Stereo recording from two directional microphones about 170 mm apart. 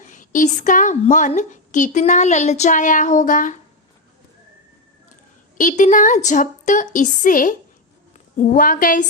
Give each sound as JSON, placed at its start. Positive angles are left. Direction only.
{"t": 0.0, "sound": "a woman's voice", "side_deg": 50}
{"t": 5.5, "sound": "a woman's voice", "side_deg": 45}